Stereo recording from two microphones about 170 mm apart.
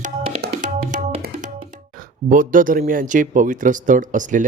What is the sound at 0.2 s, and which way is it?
Tabla, 35° right (ahead or behind).